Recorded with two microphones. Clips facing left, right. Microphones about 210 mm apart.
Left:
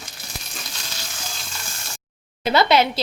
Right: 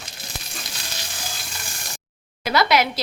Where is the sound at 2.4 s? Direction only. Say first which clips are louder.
Left 2 dB; 25° left (ahead or behind).